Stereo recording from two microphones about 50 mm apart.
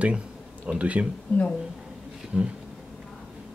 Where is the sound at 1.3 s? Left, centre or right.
Left.